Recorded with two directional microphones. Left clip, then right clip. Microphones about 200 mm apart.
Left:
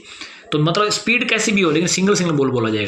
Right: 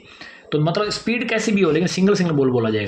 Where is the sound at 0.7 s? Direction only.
30° right (ahead or behind).